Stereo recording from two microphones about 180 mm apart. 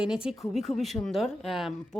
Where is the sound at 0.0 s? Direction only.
5° right (ahead or behind).